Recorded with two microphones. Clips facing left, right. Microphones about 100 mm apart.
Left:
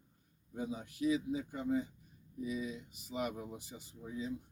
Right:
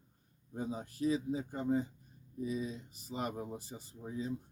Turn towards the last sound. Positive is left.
turn(degrees=-35)  # may be behind; listen again after turning